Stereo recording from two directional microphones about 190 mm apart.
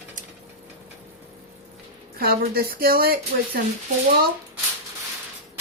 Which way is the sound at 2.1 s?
55° right (ahead or behind).